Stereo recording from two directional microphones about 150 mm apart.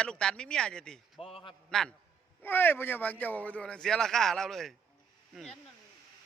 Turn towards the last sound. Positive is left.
turn(degrees=0)  # may be behind; listen again after turning